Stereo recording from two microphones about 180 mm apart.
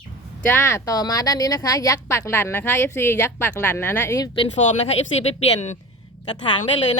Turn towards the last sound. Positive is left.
turn(degrees=25)  # may be behind; listen again after turning